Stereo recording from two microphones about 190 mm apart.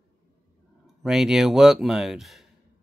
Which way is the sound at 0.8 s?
Centre (ahead or behind).